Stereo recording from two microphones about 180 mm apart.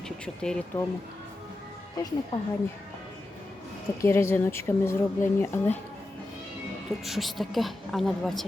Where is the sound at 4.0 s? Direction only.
15° left (ahead or behind).